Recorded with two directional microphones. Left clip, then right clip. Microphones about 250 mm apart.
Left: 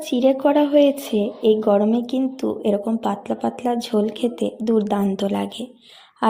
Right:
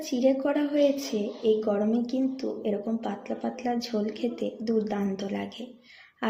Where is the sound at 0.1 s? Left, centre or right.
Left.